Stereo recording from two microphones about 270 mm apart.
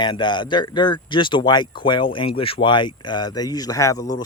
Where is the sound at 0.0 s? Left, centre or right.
Centre.